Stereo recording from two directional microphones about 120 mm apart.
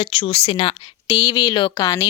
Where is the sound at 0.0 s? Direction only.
55° left (ahead or behind).